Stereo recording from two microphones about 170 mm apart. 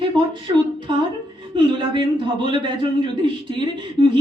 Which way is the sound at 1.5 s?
30° right (ahead or behind).